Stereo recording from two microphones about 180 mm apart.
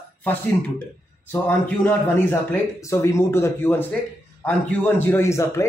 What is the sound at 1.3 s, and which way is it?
A man's voice, 10° left (ahead or behind).